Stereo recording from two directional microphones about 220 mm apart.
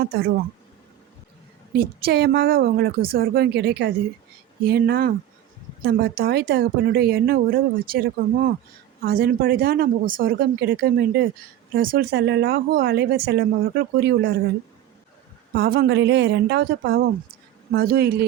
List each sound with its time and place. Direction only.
0.0 s speech: 45° right (ahead or behind)
1.7 s speech: 45° right (ahead or behind)
15.5 s speech: 45° right (ahead or behind)